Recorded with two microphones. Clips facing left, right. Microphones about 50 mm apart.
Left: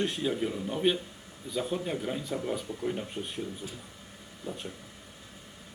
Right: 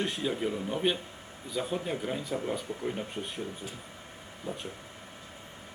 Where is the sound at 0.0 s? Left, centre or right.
Centre.